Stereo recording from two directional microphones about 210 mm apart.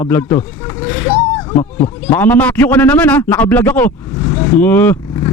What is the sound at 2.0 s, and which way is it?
Speech, 10° left (ahead or behind).